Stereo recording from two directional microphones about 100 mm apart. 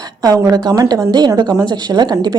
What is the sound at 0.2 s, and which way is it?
A woman's voice, 40° right (ahead or behind).